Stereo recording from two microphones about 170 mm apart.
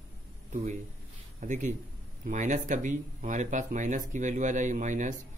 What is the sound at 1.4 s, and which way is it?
Speech, 45° right (ahead or behind).